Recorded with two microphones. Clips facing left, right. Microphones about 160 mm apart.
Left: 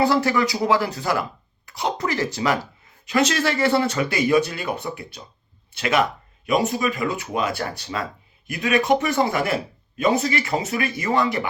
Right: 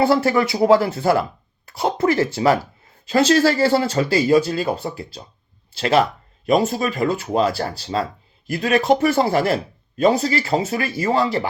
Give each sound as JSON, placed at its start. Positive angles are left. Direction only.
{"t": 0.0, "sound": "speech", "side_deg": -25}
{"t": 6.8, "sound": "speech", "side_deg": -40}